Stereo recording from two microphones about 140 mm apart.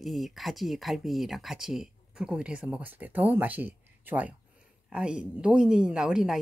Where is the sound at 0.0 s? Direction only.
Centre (ahead or behind).